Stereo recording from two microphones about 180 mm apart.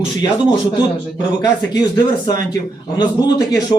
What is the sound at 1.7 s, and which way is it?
A man's voice, 20° left (ahead or behind).